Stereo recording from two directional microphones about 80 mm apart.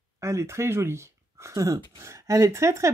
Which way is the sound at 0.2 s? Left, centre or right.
Right.